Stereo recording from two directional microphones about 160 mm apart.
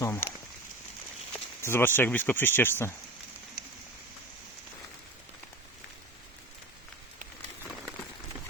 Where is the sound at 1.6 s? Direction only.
15° left (ahead or behind).